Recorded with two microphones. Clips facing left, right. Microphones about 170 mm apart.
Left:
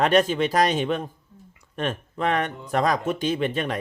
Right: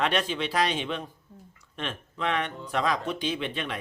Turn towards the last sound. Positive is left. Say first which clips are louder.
# left 7 dB
turn(degrees=45)  # may be behind; listen again after turning